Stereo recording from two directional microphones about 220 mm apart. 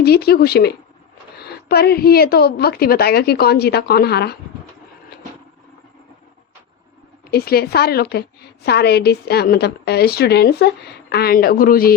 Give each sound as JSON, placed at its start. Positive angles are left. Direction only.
{"t": 0.0, "sound": "a woman's voice", "side_deg": 45}
{"t": 7.3, "sound": "a woman's voice", "side_deg": 45}